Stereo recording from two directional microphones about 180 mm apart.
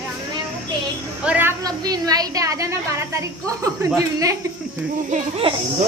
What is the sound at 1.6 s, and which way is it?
A woman's voice, 20° right (ahead or behind).